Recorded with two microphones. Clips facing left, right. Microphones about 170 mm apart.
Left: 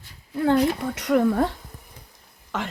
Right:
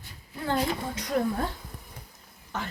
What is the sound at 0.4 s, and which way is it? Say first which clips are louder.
Speech: left 8 dB; 70° left (ahead or behind).